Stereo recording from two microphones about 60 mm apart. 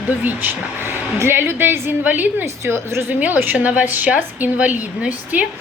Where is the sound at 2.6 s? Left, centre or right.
Right.